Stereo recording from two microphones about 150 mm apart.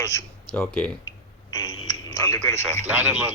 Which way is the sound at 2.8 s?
10° right (ahead or behind).